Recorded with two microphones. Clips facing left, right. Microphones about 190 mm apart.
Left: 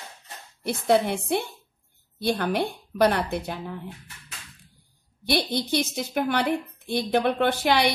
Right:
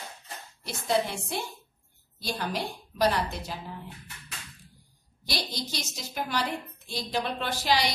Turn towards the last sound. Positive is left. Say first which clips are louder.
# left 6 dB
turn(degrees=60)  # may be behind; listen again after turning